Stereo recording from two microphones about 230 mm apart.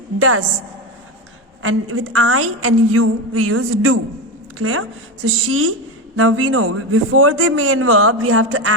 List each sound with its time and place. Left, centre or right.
0.2 s a woman's voice: right
1.6 s a woman's voice: right